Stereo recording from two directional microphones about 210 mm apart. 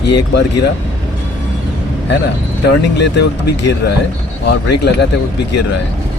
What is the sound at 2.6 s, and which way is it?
Speech, 55° left (ahead or behind).